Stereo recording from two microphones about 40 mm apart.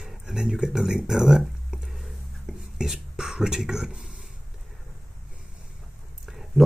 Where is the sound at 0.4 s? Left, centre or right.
Centre.